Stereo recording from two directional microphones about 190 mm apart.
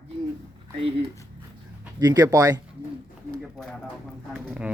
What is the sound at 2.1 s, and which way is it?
Speech, 20° right (ahead or behind).